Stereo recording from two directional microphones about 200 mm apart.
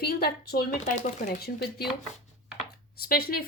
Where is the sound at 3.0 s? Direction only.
50° left (ahead or behind).